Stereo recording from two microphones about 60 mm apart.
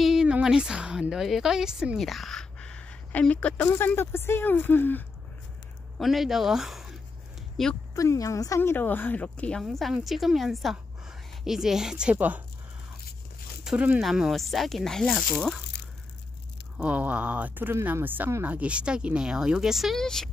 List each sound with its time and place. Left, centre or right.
0.0 s a sound: centre
0.4 s a woman's voice: centre
2.0 s speech: centre
2.6 s a sound: centre
3.6 s speech: left
5.9 s speech: centre
7.6 s speech: centre
7.9 s speech: left
8.5 s speech: left
9.6 s a woman's voice: centre
13.7 s speech: centre
14.3 s speech: centre
16.7 s speech: right; by 20.0 s centre
20.0 s speech: centre